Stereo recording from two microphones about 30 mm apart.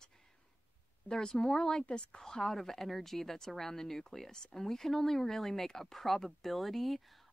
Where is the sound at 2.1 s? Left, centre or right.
Centre.